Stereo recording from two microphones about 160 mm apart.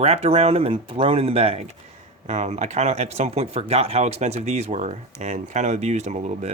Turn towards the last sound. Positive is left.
turn(degrees=-45)  # may be behind; listen again after turning